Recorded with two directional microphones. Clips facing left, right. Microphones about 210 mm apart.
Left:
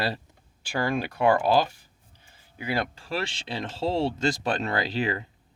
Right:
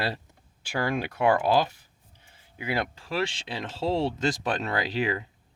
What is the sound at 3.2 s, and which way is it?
Speech, 15° right (ahead or behind).